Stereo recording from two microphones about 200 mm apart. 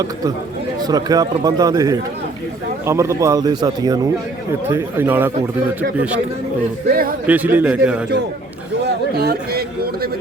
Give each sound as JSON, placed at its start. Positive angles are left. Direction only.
{"t": 0.8, "sound": "a man's voice", "side_deg": -20}
{"t": 6.8, "sound": "speech", "side_deg": -45}
{"t": 7.3, "sound": "a man's voice", "side_deg": -10}
{"t": 9.1, "sound": "speech", "side_deg": -50}